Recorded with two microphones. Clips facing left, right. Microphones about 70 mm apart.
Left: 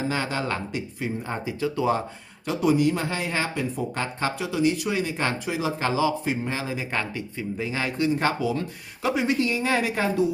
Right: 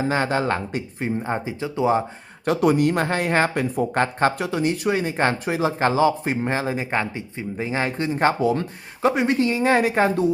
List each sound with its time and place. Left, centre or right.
0.1 s speech: right
2.5 s speech: right
6.9 s speech: right